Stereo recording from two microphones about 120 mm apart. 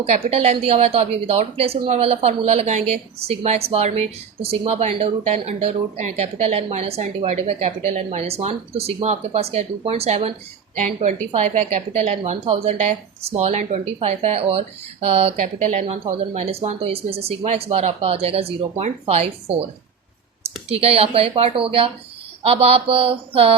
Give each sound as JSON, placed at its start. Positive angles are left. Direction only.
{"t": 0.1, "sound": "speech", "side_deg": -60}
{"t": 10.8, "sound": "a woman's voice", "side_deg": -75}
{"t": 11.3, "sound": "speech", "side_deg": -65}
{"t": 15.4, "sound": "speech", "side_deg": -70}